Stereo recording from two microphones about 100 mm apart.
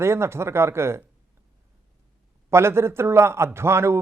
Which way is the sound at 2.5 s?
25° right (ahead or behind).